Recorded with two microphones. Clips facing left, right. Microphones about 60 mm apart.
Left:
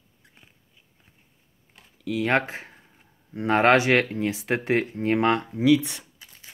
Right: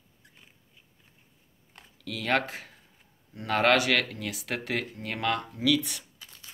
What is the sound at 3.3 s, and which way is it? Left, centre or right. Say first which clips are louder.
Speech: left 5 dB; left.